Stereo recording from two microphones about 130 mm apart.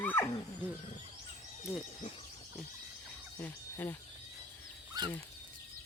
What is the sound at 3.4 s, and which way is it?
Speech, 15° left (ahead or behind).